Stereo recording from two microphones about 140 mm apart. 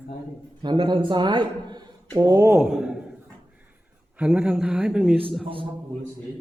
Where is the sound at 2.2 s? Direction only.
25° right (ahead or behind).